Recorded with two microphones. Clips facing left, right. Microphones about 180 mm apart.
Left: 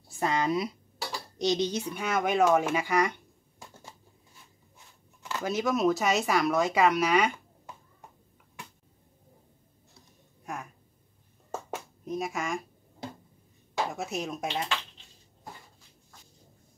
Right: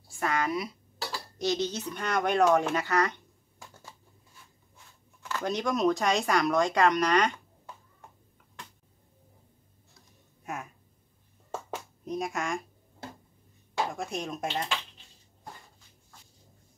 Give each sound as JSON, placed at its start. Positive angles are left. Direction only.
{"t": 0.1, "sound": "speech", "side_deg": 20}
{"t": 4.7, "sound": "a sound", "side_deg": 20}
{"t": 5.4, "sound": "speech", "side_deg": 5}
{"t": 10.4, "sound": "speech", "side_deg": -5}
{"t": 11.7, "sound": "a sound", "side_deg": 0}
{"t": 13.9, "sound": "speech", "side_deg": 5}